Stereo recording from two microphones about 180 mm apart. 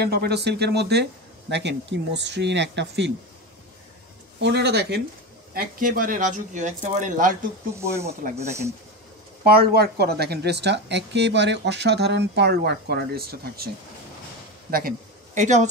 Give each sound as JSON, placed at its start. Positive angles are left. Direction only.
{"t": 0.0, "sound": "a woman's voice", "side_deg": -65}
{"t": 4.4, "sound": "a woman's voice", "side_deg": -70}
{"t": 5.5, "sound": "speech", "side_deg": -50}
{"t": 8.4, "sound": "speech", "side_deg": -15}
{"t": 9.5, "sound": "a woman's voice", "side_deg": -60}
{"t": 14.7, "sound": "speech", "side_deg": -55}